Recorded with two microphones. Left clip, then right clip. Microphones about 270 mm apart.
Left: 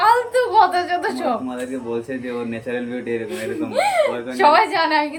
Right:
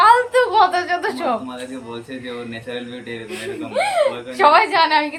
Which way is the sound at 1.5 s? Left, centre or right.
Centre.